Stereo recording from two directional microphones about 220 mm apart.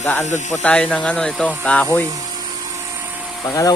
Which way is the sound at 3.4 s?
15° left (ahead or behind).